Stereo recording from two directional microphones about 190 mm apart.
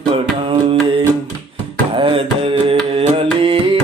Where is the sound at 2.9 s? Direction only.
30° right (ahead or behind).